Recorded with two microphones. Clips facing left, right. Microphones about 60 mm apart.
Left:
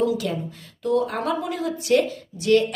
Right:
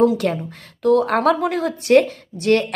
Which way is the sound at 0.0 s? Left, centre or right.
Right.